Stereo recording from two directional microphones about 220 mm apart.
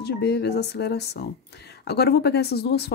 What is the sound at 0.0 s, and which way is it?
Speech, 50° left (ahead or behind).